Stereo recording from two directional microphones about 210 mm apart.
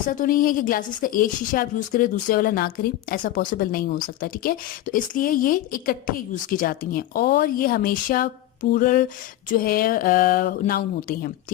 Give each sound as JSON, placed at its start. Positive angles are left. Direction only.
{"t": 0.1, "sound": "a woman's voice", "side_deg": 40}
{"t": 8.7, "sound": "a sound", "side_deg": 40}
{"t": 9.5, "sound": "a woman's voice", "side_deg": 45}